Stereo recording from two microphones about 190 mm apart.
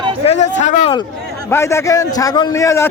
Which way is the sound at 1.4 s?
15° left (ahead or behind).